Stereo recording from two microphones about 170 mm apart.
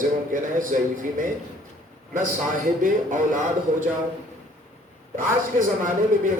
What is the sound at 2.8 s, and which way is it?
Speech, 50° right (ahead or behind).